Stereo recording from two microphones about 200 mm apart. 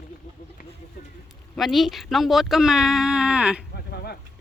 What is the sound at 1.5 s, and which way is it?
Speech, centre (ahead or behind).